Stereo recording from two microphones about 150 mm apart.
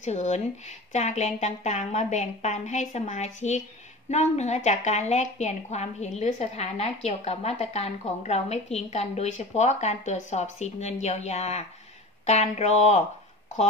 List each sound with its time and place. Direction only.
0.0 s a woman's voice: 50° left (ahead or behind)